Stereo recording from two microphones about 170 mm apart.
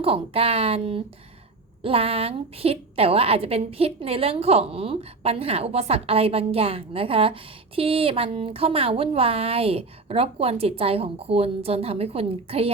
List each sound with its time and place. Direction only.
0.0 s a woman's voice: 35° right (ahead or behind)